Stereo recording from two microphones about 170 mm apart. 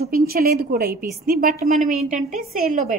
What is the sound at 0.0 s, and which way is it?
A woman's voice, 65° right (ahead or behind).